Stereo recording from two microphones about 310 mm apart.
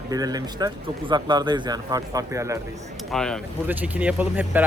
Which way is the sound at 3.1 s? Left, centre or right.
Centre.